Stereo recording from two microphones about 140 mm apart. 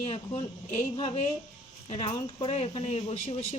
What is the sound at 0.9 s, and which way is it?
Speech, 40° left (ahead or behind).